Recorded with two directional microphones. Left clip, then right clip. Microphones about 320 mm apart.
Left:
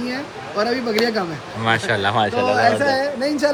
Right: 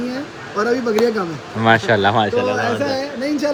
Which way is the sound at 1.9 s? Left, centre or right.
Centre.